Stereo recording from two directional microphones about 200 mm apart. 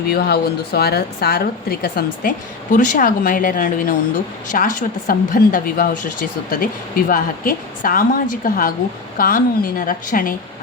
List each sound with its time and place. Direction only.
0.1 s a woman's voice: 50° left (ahead or behind)